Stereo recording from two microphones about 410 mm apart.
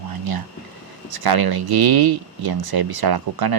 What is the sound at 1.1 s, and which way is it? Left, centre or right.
Speech, right.